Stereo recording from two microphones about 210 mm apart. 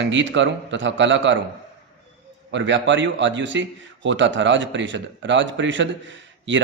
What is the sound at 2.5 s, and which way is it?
Speech, 60° right (ahead or behind).